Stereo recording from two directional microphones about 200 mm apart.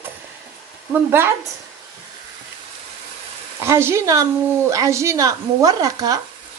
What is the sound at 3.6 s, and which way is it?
Speech, 10° right (ahead or behind).